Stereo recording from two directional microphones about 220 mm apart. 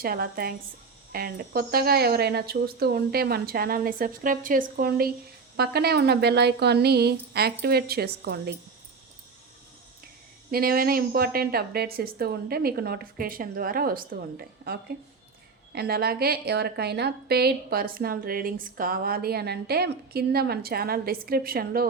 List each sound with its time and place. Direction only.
0.0 s a woman's voice: 45° right (ahead or behind)
10.5 s a woman's voice: 45° right (ahead or behind)